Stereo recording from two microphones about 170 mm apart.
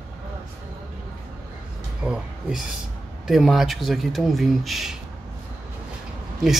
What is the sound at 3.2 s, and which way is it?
Speech, centre (ahead or behind).